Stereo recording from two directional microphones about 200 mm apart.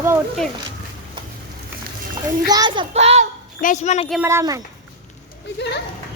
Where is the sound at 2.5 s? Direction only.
20° right (ahead or behind).